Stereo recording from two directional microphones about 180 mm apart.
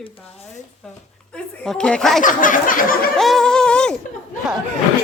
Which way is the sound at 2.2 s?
50° left (ahead or behind).